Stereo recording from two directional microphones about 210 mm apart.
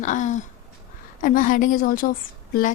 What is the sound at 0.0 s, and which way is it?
Speech, 35° left (ahead or behind).